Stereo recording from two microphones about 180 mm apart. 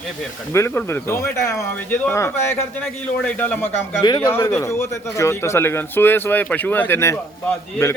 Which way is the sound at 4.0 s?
25° left (ahead or behind).